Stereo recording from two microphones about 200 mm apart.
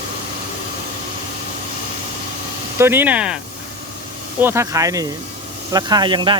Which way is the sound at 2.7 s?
10° right (ahead or behind).